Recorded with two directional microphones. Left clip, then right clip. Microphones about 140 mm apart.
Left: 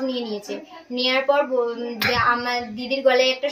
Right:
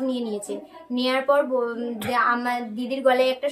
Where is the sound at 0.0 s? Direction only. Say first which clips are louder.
Left 1 dB; 20° right (ahead or behind).